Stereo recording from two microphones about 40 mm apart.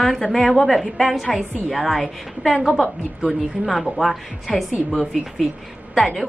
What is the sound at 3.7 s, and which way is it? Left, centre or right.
Speech, centre.